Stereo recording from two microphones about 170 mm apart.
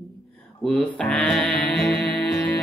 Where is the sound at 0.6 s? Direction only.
5° left (ahead or behind).